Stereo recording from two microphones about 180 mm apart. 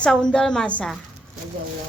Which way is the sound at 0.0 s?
5° left (ahead or behind).